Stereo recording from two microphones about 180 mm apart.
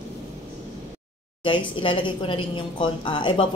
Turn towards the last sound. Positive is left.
turn(degrees=25)  # may be behind; listen again after turning